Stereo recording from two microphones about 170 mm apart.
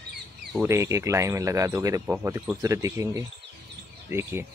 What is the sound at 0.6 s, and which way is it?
Speech, 15° right (ahead or behind).